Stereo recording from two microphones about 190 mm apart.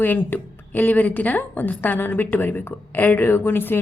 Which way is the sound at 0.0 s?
10° left (ahead or behind).